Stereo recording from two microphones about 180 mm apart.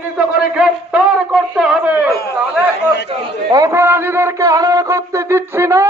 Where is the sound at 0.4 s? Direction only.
5° right (ahead or behind).